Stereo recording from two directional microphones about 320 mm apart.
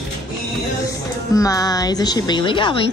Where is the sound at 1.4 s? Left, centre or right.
Centre.